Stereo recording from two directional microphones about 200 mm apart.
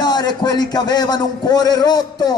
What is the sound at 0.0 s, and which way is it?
A man's voice, 20° left (ahead or behind).